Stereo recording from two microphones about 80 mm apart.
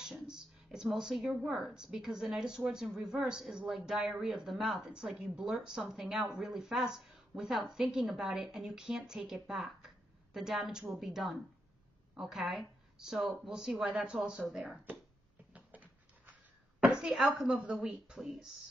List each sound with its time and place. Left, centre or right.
0.0 s a woman's voice: centre
15.5 s a sound: centre
17.0 s a woman's voice: centre